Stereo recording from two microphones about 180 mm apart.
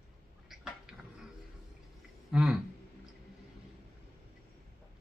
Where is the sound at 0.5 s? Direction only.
5° right (ahead or behind).